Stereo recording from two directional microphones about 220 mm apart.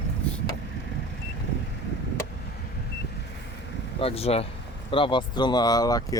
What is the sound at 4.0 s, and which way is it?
Speech, 25° left (ahead or behind).